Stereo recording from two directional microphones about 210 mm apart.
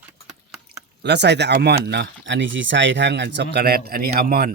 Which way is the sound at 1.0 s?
55° right (ahead or behind).